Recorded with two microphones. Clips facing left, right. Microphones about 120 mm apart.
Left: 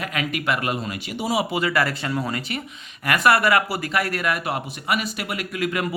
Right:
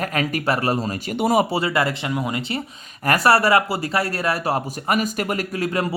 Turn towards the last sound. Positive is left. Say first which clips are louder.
# right 2 dB
turn(degrees=-35)  # may be behind; listen again after turning